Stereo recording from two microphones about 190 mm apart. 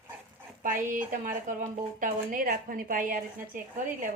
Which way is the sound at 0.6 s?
45° right (ahead or behind).